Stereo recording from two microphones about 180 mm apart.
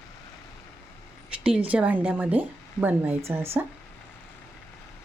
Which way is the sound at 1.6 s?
10° right (ahead or behind).